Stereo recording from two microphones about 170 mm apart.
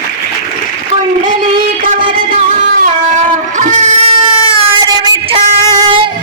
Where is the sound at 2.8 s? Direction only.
45° right (ahead or behind).